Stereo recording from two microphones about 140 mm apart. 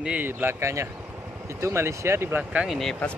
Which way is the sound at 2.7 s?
5° left (ahead or behind).